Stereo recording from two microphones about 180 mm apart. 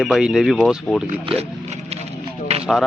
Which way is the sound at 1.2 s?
35° right (ahead or behind).